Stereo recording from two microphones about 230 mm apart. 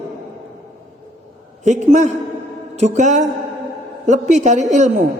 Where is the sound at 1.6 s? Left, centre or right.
Right.